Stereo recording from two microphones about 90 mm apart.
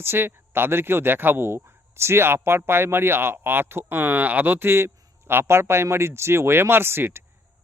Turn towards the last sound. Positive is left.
turn(degrees=-25)  # may be behind; listen again after turning